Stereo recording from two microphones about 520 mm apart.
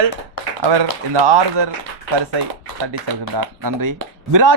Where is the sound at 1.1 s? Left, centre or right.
Right.